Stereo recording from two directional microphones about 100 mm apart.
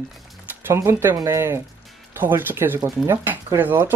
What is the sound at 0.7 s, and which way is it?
A woman's voice, 25° right (ahead or behind).